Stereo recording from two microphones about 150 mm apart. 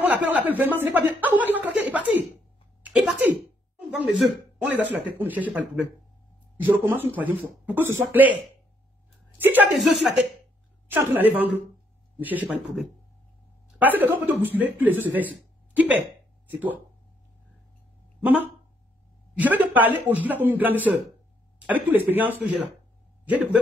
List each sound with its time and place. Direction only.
0.0 s a man's voice: 10° right (ahead or behind)
0.7 s a sound: 10° right (ahead or behind)
4.8 s a man's voice: 10° right (ahead or behind)
9.4 s a man's voice: 10° right (ahead or behind)
9.7 s speech: centre (ahead or behind)
11.1 s a man's voice: 10° right (ahead or behind)
13.7 s speech: 10° right (ahead or behind)
19.3 s a man's voice: 10° right (ahead or behind)